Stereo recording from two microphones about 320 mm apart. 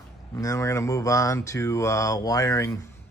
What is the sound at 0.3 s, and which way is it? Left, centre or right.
Speech, centre.